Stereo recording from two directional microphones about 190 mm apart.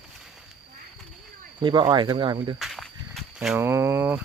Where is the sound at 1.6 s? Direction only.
25° right (ahead or behind).